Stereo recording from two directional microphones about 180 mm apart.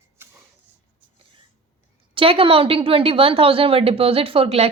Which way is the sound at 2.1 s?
30° right (ahead or behind).